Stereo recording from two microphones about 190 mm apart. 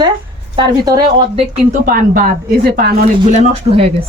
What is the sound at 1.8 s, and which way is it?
A woman's voice, 50° right (ahead or behind).